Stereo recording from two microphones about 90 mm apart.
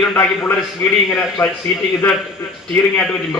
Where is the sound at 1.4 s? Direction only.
30° left (ahead or behind).